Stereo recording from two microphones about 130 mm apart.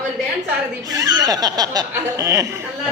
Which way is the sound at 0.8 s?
25° right (ahead or behind).